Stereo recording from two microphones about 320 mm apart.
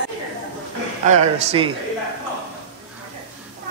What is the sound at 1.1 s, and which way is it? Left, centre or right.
Speech, right.